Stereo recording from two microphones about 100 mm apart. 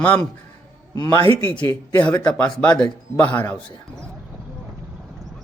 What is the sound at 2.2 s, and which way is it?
A man's voice, 10° left (ahead or behind).